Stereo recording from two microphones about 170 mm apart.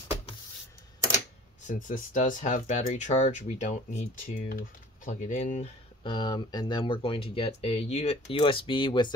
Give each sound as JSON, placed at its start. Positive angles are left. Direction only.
{"t": 1.7, "sound": "speech", "side_deg": 50}
{"t": 6.0, "sound": "speech", "side_deg": 25}